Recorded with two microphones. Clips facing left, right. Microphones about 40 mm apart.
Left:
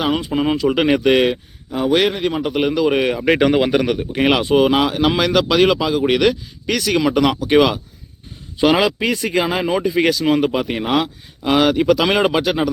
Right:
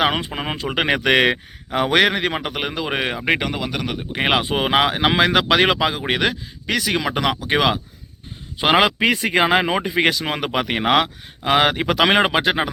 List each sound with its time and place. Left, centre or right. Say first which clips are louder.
0.0 s speech: even; right
0.3 s speech: left 8 dB; right
0.5 s speech: left 3 dB; right
1.0 s speech: left 2 dB; right
2.6 s speech: left 8 dB; right
3.7 s speech: left 9 dB; centre
4.1 s speech: left 3 dB; centre
5.9 s speech: left 6 dB; centre
8.6 s speech: left 1 dB; right